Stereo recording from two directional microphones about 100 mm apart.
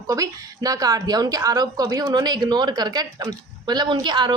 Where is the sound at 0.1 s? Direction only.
35° right (ahead or behind).